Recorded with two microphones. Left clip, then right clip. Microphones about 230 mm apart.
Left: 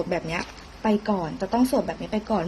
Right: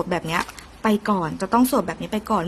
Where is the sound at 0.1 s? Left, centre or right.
Right.